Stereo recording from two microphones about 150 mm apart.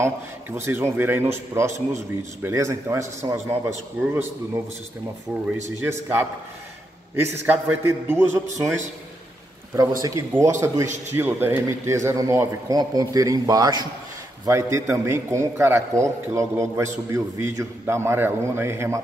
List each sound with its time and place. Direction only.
0.0 s a man's voice: 15° right (ahead or behind)
5.3 s a man's voice: 15° right (ahead or behind)
10.0 s a man's voice: 20° right (ahead or behind)